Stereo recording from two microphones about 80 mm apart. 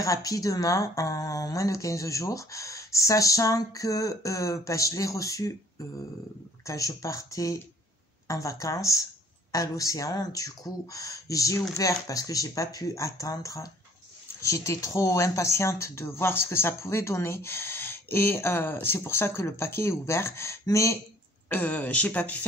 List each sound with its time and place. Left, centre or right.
0.0 s speech: left
21.5 s speech: left